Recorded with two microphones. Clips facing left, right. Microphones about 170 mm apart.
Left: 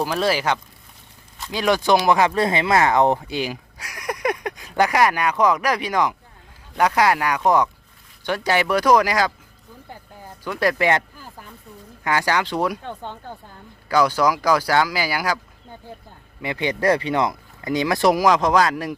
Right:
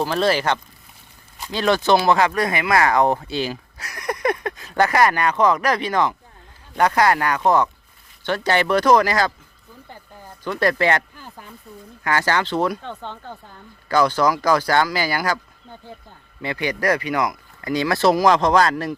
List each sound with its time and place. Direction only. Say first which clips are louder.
0.0 s speech: right 1 dB; 10° left (ahead or behind)
10.4 s speech: right 1 dB; 10° left (ahead or behind)
16.4 s speech: left 1 dB; 20° left (ahead or behind)